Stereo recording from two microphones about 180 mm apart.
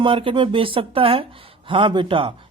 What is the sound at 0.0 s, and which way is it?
Speech, 30° right (ahead or behind).